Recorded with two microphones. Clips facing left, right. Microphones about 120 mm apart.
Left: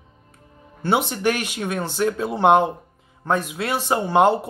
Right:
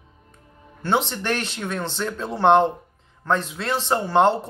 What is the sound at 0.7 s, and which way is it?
A man's voice, 10° left (ahead or behind).